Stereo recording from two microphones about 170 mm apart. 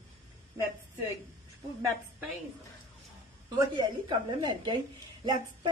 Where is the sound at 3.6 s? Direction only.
25° right (ahead or behind).